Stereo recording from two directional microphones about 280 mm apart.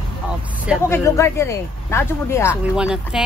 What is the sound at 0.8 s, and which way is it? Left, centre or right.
Speech, centre.